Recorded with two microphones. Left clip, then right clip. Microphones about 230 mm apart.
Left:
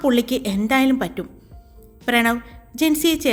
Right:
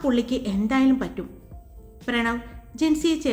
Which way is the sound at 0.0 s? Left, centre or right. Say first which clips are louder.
Left 5 dB; left.